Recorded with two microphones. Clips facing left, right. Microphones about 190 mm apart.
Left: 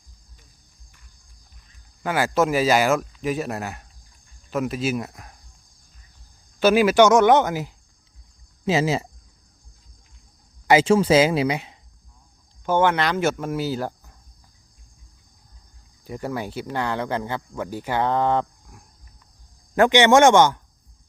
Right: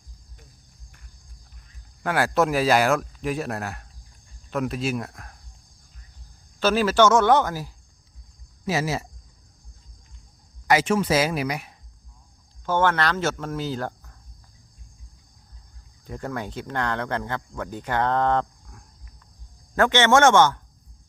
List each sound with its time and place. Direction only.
2.0 s a man's voice: centre (ahead or behind)
6.6 s speech: 15° left (ahead or behind)
10.7 s speech: 30° left (ahead or behind); by 14.1 s 10° left (ahead or behind)
16.0 s speech: 5° left (ahead or behind)